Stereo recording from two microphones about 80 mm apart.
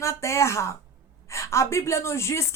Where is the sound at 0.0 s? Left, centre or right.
Left.